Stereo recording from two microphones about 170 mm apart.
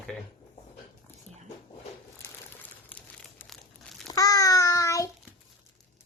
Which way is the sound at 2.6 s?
10° left (ahead or behind).